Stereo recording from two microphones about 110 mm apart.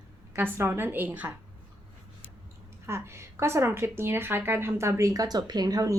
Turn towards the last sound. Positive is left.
turn(degrees=-35)  # may be behind; listen again after turning